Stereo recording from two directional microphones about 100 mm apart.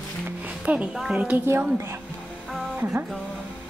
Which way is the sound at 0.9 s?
10° right (ahead or behind).